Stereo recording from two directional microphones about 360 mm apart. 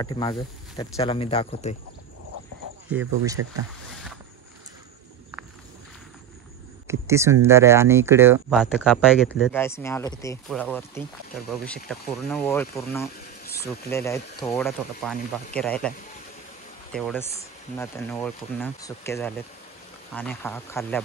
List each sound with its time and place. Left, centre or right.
0.0 s speech: centre
2.9 s speech: centre
6.9 s speech: centre
16.9 s speech: centre